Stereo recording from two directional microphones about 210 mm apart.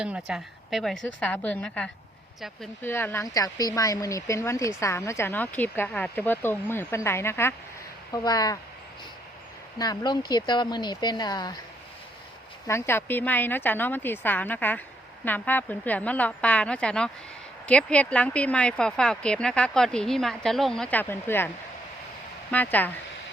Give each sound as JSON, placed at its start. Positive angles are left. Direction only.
{"t": 0.0, "sound": "speech", "side_deg": -5}
{"t": 9.7, "sound": "speech", "side_deg": 20}
{"t": 12.6, "sound": "speech", "side_deg": 10}
{"t": 22.5, "sound": "speech", "side_deg": 10}